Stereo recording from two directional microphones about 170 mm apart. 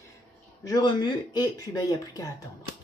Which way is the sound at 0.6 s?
20° left (ahead or behind).